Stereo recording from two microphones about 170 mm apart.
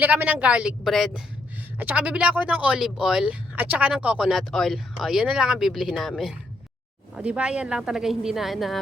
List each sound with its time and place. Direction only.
0.0 s a woman's voice: 10° right (ahead or behind)